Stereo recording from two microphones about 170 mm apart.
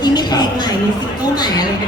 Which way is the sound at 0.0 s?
25° left (ahead or behind).